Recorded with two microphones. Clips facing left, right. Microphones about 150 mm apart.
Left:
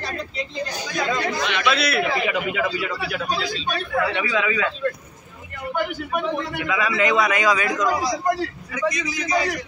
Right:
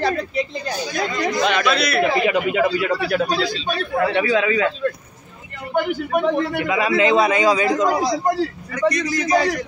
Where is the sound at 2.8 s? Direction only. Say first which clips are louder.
Right 7 dB; 55° right (ahead or behind).